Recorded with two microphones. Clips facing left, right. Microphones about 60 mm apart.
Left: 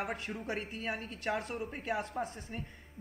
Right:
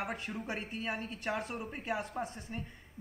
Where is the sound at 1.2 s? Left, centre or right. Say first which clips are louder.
Left 2 dB; centre.